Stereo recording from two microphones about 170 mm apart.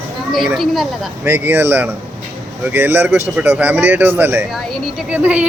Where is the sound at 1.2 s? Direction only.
10° right (ahead or behind).